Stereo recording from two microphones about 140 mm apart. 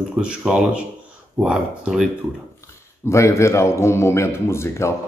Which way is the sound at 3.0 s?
20° left (ahead or behind).